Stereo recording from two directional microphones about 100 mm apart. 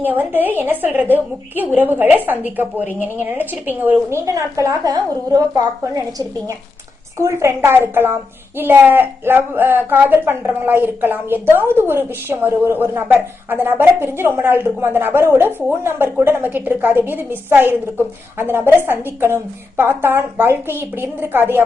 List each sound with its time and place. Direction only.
0.0 s a child's voice: 20° right (ahead or behind)
4.3 s a woman's voice: 30° right (ahead or behind)